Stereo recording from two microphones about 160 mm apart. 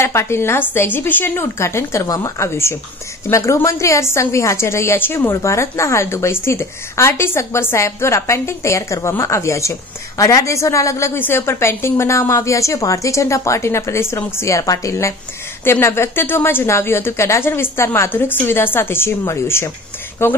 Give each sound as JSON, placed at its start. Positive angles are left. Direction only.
{"t": 0.0, "sound": "a woman's voice", "side_deg": 15}